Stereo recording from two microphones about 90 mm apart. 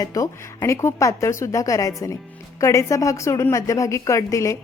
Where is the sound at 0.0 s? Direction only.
40° left (ahead or behind).